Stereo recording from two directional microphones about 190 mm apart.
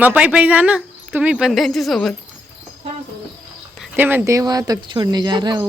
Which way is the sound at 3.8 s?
10° right (ahead or behind).